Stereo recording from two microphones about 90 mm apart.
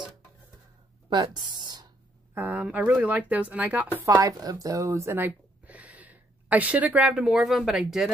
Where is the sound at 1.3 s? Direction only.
50° right (ahead or behind).